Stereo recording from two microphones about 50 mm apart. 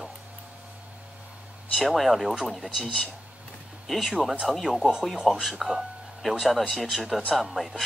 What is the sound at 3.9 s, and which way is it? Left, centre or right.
Speech, centre.